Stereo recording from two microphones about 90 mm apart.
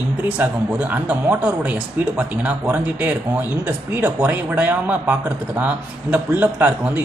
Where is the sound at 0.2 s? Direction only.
15° right (ahead or behind).